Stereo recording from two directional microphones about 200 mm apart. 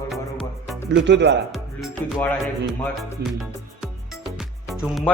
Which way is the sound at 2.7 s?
Centre (ahead or behind).